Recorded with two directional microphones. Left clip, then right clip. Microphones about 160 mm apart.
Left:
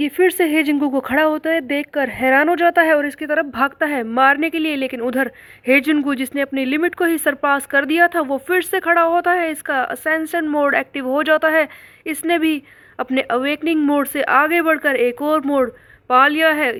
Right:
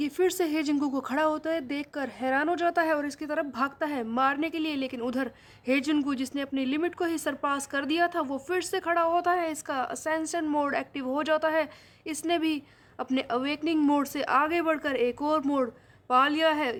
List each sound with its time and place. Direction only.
0.0 s speech: 25° left (ahead or behind)